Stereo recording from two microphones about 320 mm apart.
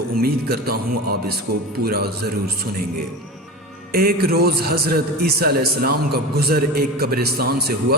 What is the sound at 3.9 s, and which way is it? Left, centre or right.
A man's voice, right.